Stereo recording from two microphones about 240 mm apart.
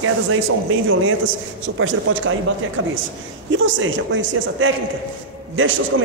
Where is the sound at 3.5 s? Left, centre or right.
Right.